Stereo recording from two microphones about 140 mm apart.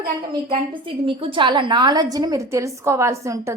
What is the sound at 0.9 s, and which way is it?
A woman's voice, 40° right (ahead or behind).